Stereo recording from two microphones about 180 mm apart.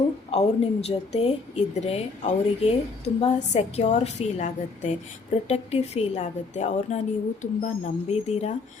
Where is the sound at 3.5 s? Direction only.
35° left (ahead or behind).